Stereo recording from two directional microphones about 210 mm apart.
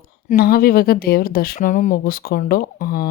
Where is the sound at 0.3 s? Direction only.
45° left (ahead or behind).